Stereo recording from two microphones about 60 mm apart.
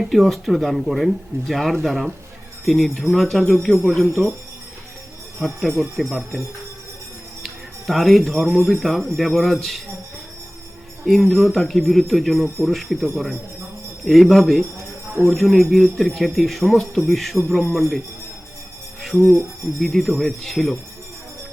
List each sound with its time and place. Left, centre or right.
0.0 s speech: centre
5.5 s speech: centre
7.4 s speech: centre
11.0 s speech: centre
14.8 s music: right
15.3 s speech: centre
19.8 s speech: centre